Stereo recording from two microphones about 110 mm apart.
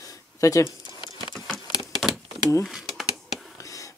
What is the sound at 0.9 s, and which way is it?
Patter, 40° left (ahead or behind).